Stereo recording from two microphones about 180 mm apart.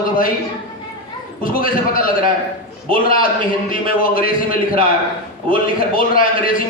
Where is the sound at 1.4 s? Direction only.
50° left (ahead or behind).